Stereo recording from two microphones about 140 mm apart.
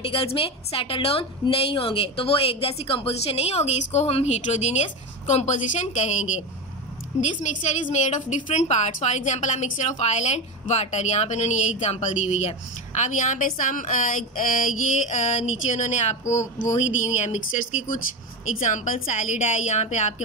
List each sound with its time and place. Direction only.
0.0 s a woman's voice: 40° left (ahead or behind)